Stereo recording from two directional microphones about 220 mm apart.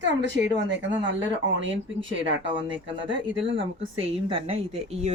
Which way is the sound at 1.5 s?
60° right (ahead or behind).